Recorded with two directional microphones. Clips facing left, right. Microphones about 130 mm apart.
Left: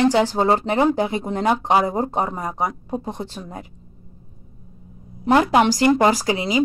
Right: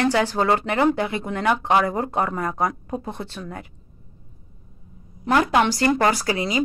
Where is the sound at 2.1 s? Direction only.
15° left (ahead or behind).